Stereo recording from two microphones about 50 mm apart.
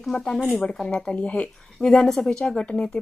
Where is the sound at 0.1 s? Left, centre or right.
Centre.